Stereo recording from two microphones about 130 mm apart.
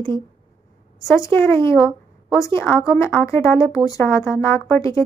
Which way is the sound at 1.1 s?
20° left (ahead or behind).